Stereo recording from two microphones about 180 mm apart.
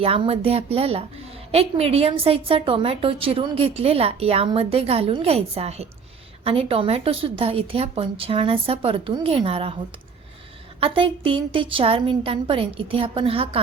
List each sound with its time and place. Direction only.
0.0 s a woman's voice: 35° right (ahead or behind)
10.8 s a woman's voice: 30° right (ahead or behind)